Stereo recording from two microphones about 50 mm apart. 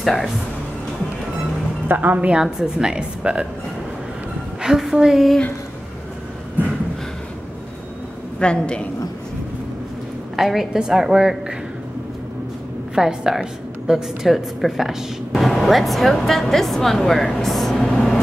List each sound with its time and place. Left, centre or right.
0.0 s speech: centre
1.9 s a woman's voice: right
2.3 s a woman's voice: centre
4.6 s a woman's voice: centre
8.4 s a woman's voice: centre
10.3 s a woman's voice: centre
12.9 s a woman's voice: centre
17.7 s vehicle: centre